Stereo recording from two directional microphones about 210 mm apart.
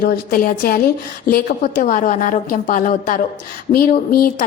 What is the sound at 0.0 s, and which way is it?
A woman's voice, 45° left (ahead or behind).